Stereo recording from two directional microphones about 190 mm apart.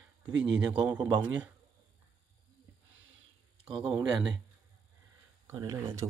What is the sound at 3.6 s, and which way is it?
Speech, centre (ahead or behind).